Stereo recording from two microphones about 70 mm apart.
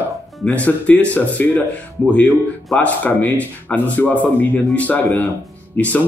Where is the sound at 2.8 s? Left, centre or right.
Left.